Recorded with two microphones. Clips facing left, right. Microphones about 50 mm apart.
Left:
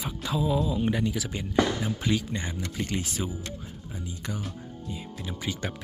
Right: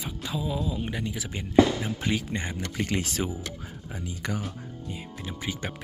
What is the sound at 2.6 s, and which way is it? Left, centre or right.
Speech, right.